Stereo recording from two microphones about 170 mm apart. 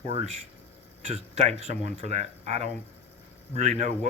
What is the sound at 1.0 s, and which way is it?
Speech, 40° right (ahead or behind).